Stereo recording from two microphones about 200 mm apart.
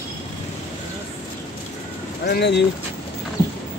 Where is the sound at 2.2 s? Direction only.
55° left (ahead or behind).